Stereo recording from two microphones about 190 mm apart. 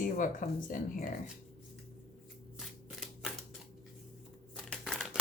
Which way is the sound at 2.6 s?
Centre (ahead or behind).